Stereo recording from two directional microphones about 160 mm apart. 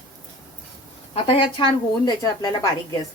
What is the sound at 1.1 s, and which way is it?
Speech, 35° left (ahead or behind).